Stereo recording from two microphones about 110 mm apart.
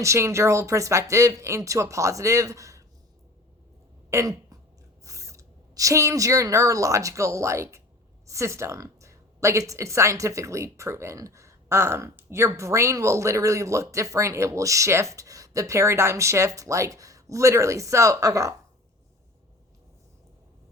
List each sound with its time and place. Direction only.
0.0 s a woman's voice: 25° right (ahead or behind)
4.1 s a woman's voice: 30° right (ahead or behind)